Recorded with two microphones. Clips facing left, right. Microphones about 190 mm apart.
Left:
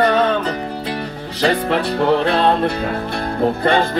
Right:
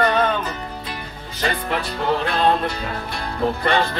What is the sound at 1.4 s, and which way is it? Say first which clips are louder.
Music: left 7 dB; 65° left (ahead or behind).